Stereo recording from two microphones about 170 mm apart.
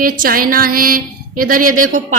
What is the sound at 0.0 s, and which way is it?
Speech, 55° right (ahead or behind).